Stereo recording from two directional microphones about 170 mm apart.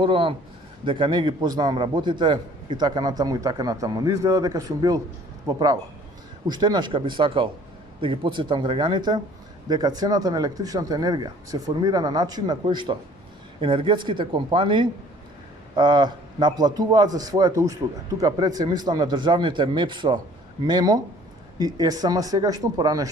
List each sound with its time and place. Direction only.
0.0 s a man's voice: 30° right (ahead or behind)